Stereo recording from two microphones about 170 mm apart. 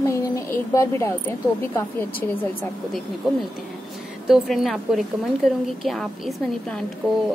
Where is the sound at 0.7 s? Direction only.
15° left (ahead or behind).